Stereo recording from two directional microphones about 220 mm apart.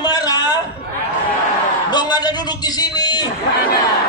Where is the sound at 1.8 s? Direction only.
20° left (ahead or behind).